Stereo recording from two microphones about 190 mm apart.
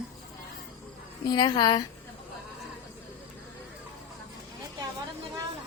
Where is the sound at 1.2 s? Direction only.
20° left (ahead or behind).